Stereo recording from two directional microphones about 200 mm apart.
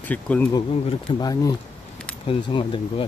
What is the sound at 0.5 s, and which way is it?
Speech, 20° left (ahead or behind).